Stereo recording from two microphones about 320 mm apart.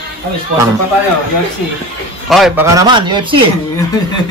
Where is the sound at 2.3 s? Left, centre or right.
Centre.